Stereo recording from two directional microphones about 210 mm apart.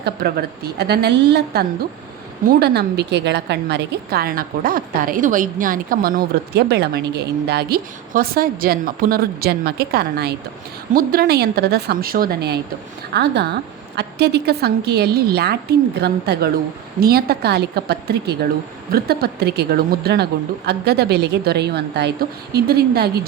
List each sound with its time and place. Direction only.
0.0 s a woman's voice: 50° right (ahead or behind)